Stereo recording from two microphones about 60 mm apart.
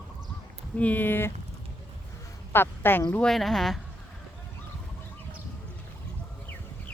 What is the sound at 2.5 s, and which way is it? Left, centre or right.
Speech, left.